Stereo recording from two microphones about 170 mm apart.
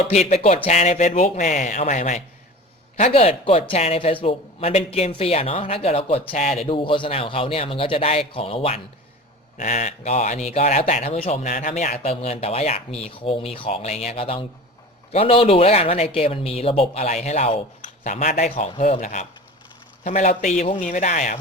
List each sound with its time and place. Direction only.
0.0 s speech: 40° left (ahead or behind)